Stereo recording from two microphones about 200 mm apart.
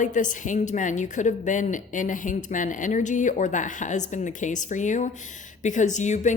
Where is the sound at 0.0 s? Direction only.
40° left (ahead or behind).